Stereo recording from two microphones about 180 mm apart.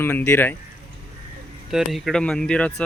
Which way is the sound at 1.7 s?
Centre (ahead or behind).